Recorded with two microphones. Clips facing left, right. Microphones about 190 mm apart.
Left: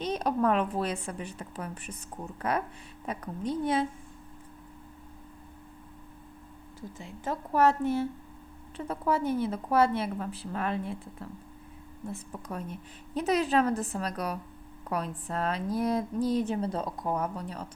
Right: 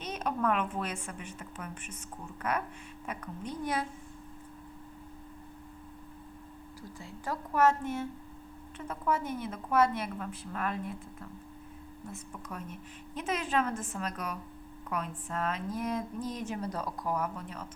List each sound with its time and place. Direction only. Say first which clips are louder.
0.0 s speech: left 5 dB; 35° left (ahead or behind)
7.0 s speech: left 3 dB; 30° left (ahead or behind)
12.1 s speech: left 5 dB; 30° left (ahead or behind)